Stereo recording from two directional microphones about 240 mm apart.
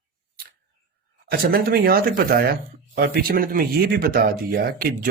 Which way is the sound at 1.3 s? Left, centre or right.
Right.